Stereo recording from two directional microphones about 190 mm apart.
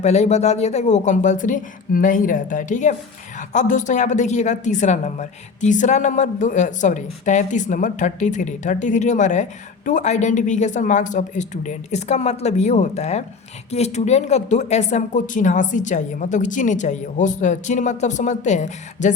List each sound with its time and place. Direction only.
0.0 s a woman's voice: 35° left (ahead or behind)